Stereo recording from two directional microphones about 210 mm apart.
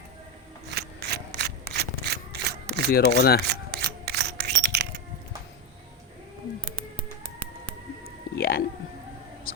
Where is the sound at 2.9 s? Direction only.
45° left (ahead or behind).